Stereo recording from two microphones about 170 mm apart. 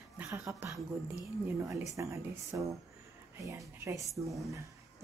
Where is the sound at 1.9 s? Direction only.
20° right (ahead or behind).